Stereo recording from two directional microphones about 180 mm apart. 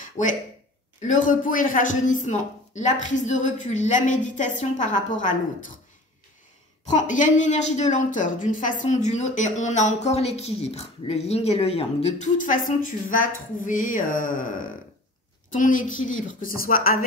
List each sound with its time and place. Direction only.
0.0 s a sound: 45° left (ahead or behind)
1.0 s speech: 45° left (ahead or behind)
6.9 s a woman's voice: 45° left (ahead or behind)
15.5 s speech: 45° left (ahead or behind)